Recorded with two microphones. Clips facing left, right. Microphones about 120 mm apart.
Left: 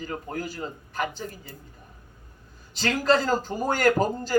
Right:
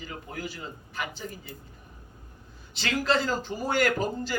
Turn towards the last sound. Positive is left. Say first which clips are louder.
# left 6 dB
turn(degrees=40)  # may be behind; listen again after turning